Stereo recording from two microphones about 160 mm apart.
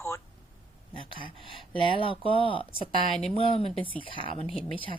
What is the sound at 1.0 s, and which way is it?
Speech, 35° right (ahead or behind).